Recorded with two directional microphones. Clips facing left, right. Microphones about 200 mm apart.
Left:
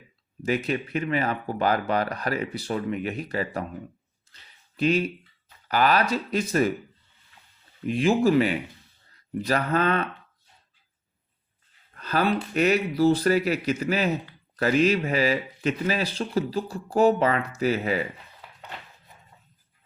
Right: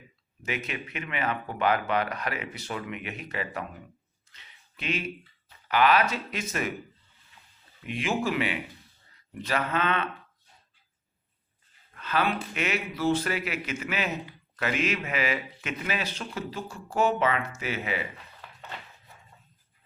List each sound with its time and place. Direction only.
0.4 s speech: 35° left (ahead or behind)
4.3 s a sound: 35° left (ahead or behind)
5.6 s speech: 40° left (ahead or behind)
7.9 s speech: 35° left (ahead or behind)
11.9 s speech: 40° left (ahead or behind)